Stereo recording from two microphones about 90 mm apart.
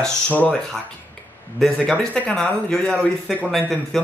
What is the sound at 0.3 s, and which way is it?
Speech, 20° left (ahead or behind).